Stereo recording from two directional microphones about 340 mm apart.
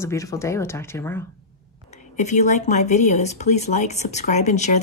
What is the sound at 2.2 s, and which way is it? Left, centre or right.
Speech, left.